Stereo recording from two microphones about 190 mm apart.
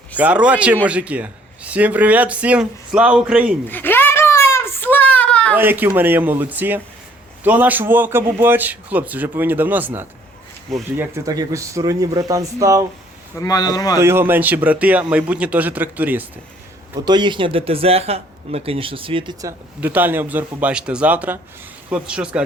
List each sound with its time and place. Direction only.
0.2 s speech: 5° right (ahead or behind)
3.7 s a sound: 10° left (ahead or behind)
5.5 s speech: 10° right (ahead or behind)
13.4 s speech: 20° left (ahead or behind)
14.0 s speech: 10° right (ahead or behind)
16.9 s speech: 20° right (ahead or behind)
19.8 s speech: 10° right (ahead or behind)